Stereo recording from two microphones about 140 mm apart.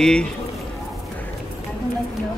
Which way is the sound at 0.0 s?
5° left (ahead or behind).